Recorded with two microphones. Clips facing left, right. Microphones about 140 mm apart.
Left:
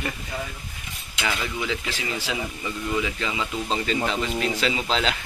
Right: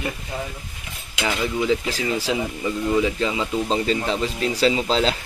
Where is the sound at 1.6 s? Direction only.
40° right (ahead or behind).